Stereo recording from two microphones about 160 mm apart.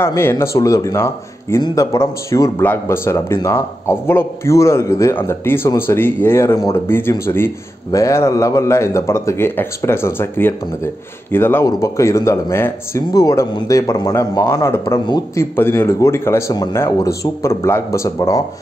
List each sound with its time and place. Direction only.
0.0 s a man's voice: 15° left (ahead or behind)
15.5 s a man's voice: 15° left (ahead or behind)